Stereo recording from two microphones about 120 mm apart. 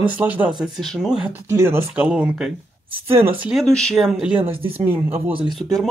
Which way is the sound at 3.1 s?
55° right (ahead or behind).